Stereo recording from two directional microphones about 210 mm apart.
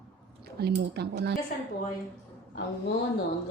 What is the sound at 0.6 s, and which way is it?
Speech, 50° right (ahead or behind).